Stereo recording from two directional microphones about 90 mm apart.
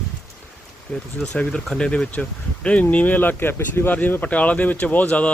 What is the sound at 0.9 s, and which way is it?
Speech, 5° left (ahead or behind).